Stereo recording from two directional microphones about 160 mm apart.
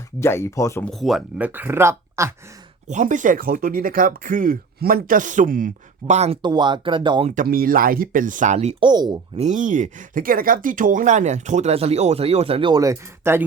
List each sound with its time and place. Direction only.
0.2 s speech: 15° left (ahead or behind)
0.9 s speech: centre (ahead or behind); by 2.3 s 15° right (ahead or behind)
2.8 s speech: 50° right (ahead or behind)
6.1 s speech: 40° right (ahead or behind)
6.4 s speech: 30° right (ahead or behind)
7.4 s speech: 65° right (ahead or behind); by 8.7 s 45° right (ahead or behind)
8.8 s speech: 25° right (ahead or behind)
9.4 s speech: 50° right (ahead or behind); by 13.4 s 15° right (ahead or behind)